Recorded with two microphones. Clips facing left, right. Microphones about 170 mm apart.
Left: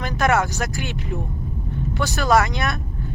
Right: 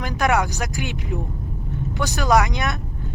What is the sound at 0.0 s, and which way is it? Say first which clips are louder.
Speech: left 1 dB; 15° right (ahead or behind).